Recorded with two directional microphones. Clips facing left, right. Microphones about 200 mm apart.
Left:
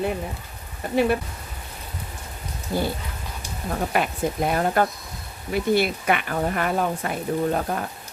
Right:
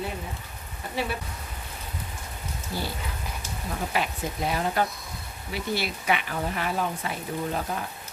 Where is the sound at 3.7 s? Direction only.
55° left (ahead or behind).